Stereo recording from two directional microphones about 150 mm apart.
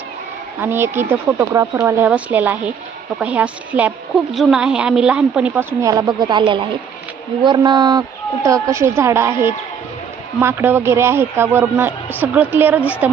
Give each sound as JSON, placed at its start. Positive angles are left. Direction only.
{"t": 0.6, "sound": "speech", "side_deg": -15}
{"t": 5.8, "sound": "a woman's voice", "side_deg": -25}
{"t": 10.4, "sound": "speech", "side_deg": -15}